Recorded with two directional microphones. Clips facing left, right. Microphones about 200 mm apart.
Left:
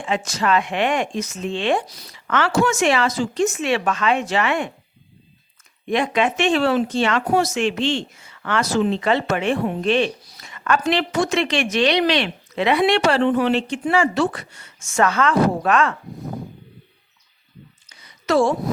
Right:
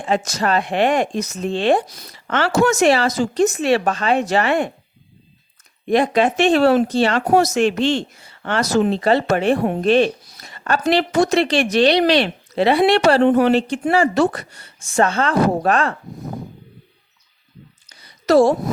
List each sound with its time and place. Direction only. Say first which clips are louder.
0.0 s speech: right 3 dB; 40° right (ahead or behind)
2.1 s speech: right 2 dB; 35° right (ahead or behind)
5.9 s speech: right 4 dB; 35° right (ahead or behind)
17.8 s a sound: right 5 dB; 35° right (ahead or behind)